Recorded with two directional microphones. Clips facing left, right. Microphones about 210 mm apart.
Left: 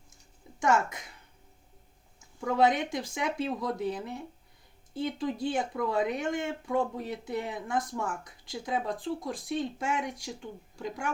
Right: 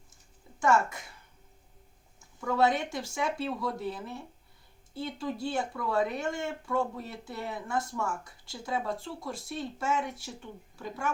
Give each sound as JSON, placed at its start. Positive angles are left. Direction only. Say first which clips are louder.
{"t": 0.6, "sound": "speech", "louder": "right 1 dB", "side_deg": 20}
{"t": 2.4, "sound": "speech", "louder": "left 1 dB", "side_deg": 20}